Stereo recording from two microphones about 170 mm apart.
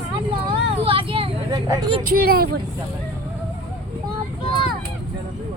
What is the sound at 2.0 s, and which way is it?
Speech, 60° right (ahead or behind).